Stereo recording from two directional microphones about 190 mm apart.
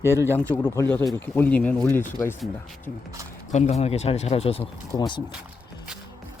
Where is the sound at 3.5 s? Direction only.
35° left (ahead or behind).